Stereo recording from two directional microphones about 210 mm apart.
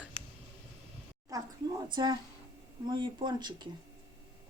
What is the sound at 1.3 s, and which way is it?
Speech, 20° right (ahead or behind).